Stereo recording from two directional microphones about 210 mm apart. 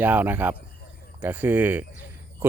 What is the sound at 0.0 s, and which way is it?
Speech, 10° right (ahead or behind).